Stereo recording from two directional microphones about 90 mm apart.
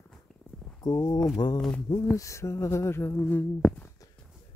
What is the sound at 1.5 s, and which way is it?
Speech, 10° left (ahead or behind).